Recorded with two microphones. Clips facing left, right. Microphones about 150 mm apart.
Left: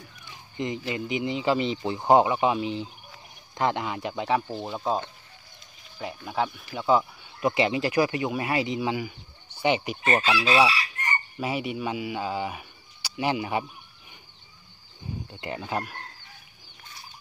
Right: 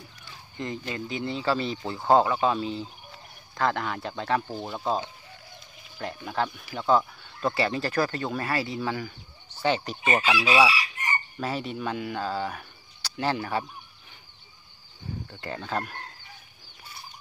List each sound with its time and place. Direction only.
0.6 s speech: 15° left (ahead or behind)
4.5 s speech: centre (ahead or behind)
10.0 s chicken: 10° right (ahead or behind)
11.3 s speech: 10° left (ahead or behind)
15.2 s speech: 15° left (ahead or behind)